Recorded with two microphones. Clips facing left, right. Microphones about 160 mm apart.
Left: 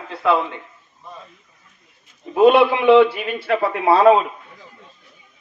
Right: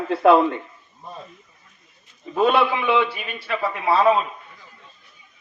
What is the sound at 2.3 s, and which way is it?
Speech, 15° left (ahead or behind).